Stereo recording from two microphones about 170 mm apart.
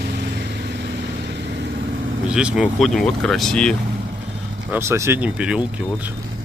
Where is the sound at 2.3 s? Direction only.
5° right (ahead or behind).